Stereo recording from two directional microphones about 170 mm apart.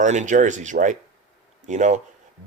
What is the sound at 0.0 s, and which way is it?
Speech, 45° right (ahead or behind).